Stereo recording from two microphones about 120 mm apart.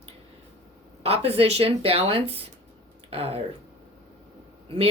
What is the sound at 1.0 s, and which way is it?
Speech, 55° right (ahead or behind).